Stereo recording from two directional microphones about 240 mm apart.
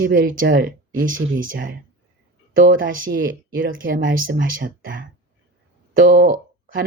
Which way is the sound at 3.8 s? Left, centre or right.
Right.